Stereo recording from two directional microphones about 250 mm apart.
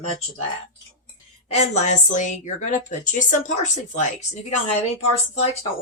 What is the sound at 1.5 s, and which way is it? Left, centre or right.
Speech, left.